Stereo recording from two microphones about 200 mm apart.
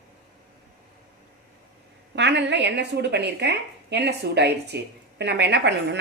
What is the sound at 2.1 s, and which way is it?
A woman's voice, 60° right (ahead or behind).